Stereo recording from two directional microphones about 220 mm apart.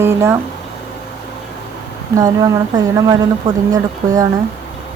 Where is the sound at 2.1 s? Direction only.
15° right (ahead or behind).